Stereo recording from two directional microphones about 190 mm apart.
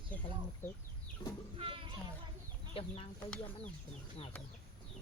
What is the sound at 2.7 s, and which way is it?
Speech, 30° left (ahead or behind).